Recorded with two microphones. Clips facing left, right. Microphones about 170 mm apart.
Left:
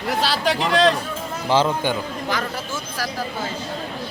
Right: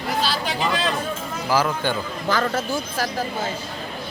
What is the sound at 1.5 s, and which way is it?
Speech, 25° left (ahead or behind).